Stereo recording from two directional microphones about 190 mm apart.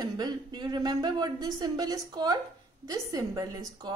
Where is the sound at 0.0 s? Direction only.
20° right (ahead or behind).